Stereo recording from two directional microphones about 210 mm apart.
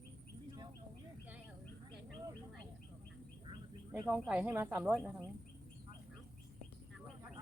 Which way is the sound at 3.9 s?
5° right (ahead or behind).